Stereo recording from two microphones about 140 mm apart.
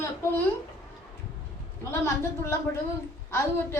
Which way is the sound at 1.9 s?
20° left (ahead or behind).